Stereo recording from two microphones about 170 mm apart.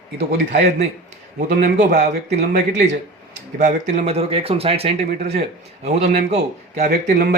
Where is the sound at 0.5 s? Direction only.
45° right (ahead or behind).